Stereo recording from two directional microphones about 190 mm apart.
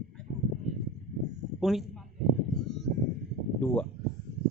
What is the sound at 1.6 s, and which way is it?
Speech, centre (ahead or behind).